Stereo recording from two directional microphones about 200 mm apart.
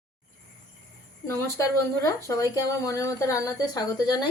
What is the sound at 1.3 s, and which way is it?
Speech, 15° left (ahead or behind).